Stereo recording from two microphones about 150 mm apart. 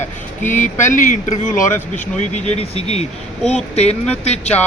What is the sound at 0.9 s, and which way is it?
Speech, 60° left (ahead or behind).